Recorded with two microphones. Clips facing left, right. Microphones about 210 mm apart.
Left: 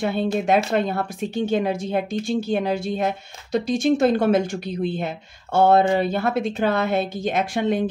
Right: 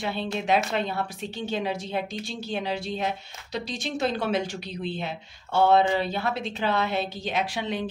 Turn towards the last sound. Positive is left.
turn(degrees=50)  # may be behind; listen again after turning